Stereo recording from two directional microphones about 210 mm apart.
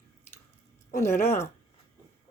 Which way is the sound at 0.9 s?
10° left (ahead or behind).